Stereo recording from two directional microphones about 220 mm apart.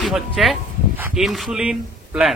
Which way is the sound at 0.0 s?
Centre (ahead or behind).